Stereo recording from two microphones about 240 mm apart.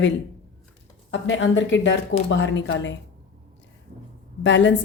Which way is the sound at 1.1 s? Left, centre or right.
Left.